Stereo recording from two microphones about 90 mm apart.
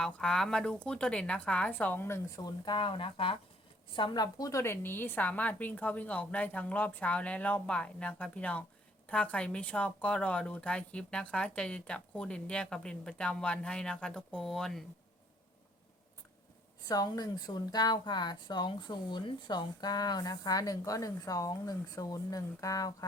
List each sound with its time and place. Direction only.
0.0 s speech: 10° left (ahead or behind); by 2.2 s 25° left (ahead or behind)
2.3 s speech: 50° left (ahead or behind); by 3.3 s 75° left (ahead or behind)
3.9 s speech: 60° left (ahead or behind); by 14.8 s 5° left (ahead or behind)
16.9 s a woman's voice: 45° left (ahead or behind)